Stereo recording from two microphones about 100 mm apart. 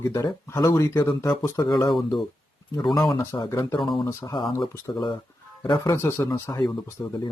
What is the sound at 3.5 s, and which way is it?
Speech, 35° left (ahead or behind).